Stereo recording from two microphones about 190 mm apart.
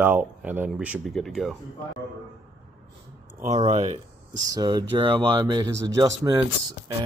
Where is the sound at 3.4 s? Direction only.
35° right (ahead or behind).